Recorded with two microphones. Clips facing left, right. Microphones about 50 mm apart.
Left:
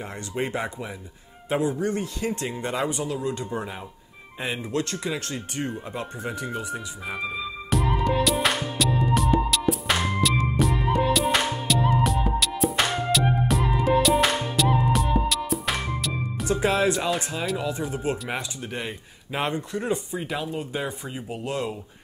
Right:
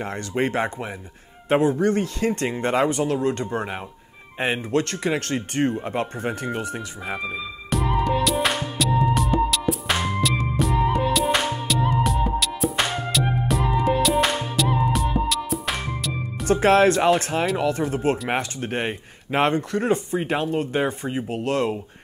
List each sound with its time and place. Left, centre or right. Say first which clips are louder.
0.0 s speech: right 5 dB; right
2.9 s speech: right 6 dB; right
7.2 s music: even; centre
16.4 s speech: right 6 dB; right
21.3 s speech: right 5 dB; right